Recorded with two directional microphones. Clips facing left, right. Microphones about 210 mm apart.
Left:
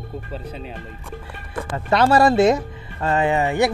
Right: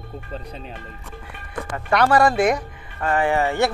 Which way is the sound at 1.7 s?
25° left (ahead or behind).